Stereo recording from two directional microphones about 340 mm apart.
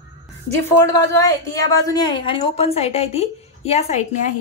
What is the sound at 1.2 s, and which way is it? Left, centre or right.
A woman's voice, centre.